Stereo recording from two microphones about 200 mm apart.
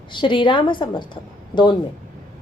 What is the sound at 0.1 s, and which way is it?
A woman's voice, 25° left (ahead or behind).